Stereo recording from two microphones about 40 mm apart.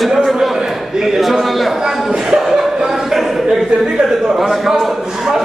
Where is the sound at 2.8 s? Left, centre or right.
Centre.